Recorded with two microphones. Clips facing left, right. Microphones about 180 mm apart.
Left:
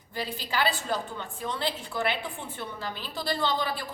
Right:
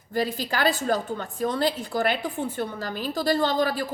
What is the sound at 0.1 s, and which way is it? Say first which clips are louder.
A woman's voice: right 7 dB; 45° right (ahead or behind).